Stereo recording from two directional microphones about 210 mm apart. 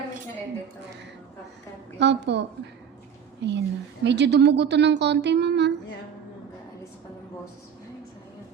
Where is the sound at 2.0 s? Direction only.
55° right (ahead or behind).